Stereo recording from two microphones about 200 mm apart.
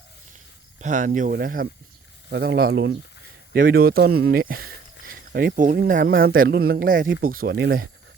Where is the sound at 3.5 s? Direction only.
45° right (ahead or behind).